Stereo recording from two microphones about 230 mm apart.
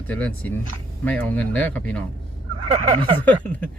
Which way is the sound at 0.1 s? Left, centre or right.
Centre.